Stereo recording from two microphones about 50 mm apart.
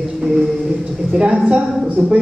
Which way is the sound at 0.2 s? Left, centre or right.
Centre.